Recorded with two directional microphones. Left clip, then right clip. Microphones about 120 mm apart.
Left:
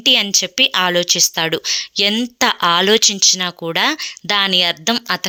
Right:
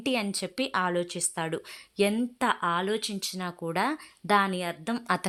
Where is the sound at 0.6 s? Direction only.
15° left (ahead or behind).